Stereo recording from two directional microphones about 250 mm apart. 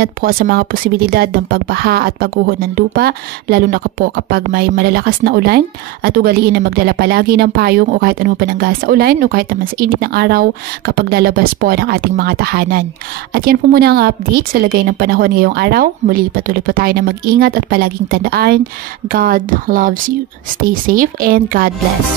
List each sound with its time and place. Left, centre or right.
0.0 s a woman's voice: right